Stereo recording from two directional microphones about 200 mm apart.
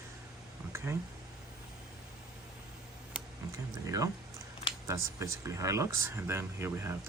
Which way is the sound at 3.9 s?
15° right (ahead or behind).